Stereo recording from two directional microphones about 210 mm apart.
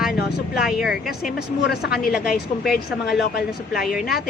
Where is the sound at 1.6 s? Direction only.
50° left (ahead or behind).